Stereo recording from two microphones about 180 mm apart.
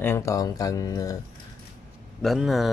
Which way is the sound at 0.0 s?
15° left (ahead or behind).